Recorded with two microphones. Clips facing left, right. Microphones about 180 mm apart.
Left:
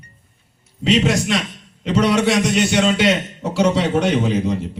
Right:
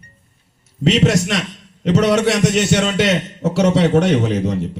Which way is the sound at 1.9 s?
75° right (ahead or behind).